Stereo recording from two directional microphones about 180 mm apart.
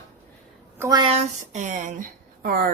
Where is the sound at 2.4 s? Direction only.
55° right (ahead or behind).